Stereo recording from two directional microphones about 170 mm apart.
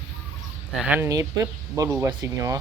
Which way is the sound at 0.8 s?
10° right (ahead or behind).